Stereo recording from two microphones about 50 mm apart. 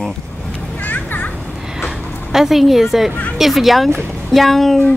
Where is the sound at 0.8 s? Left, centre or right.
Left.